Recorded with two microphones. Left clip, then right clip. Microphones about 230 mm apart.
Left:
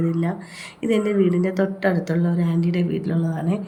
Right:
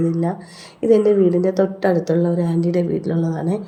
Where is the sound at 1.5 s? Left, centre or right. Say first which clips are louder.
Right 4 dB; centre.